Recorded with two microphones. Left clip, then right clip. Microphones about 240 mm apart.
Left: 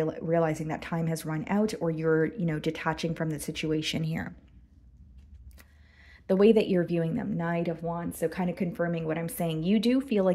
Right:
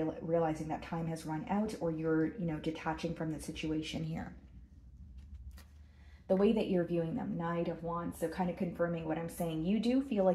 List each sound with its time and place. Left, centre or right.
0.0 s speech: left
6.2 s speech: left